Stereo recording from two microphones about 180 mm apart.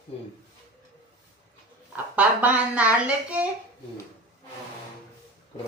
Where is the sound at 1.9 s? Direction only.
5° right (ahead or behind).